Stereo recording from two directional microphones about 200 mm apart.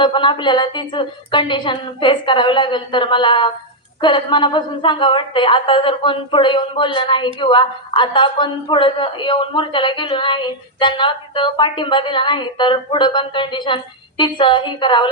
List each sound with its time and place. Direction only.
0.0 s speech: 25° left (ahead or behind)